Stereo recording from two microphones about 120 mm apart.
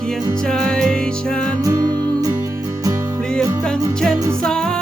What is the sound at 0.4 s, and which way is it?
Music, 5° left (ahead or behind).